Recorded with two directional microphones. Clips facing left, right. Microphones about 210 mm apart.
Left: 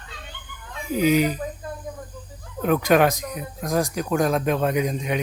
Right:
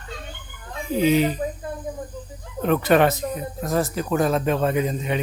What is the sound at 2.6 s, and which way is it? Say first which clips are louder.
A man's voice: even; 5° left (ahead or behind).